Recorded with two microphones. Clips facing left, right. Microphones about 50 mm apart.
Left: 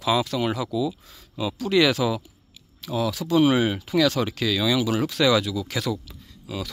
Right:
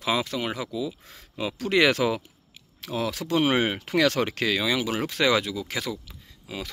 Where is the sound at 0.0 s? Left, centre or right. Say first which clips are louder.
Left 4 dB; right.